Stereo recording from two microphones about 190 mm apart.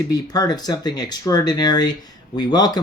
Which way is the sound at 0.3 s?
20° left (ahead or behind).